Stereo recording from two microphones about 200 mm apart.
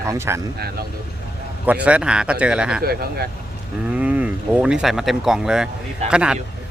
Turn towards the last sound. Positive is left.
turn(degrees=-5)  # may be behind; listen again after turning